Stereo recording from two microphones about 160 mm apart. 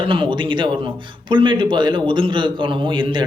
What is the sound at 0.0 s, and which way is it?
A man's voice, 30° right (ahead or behind).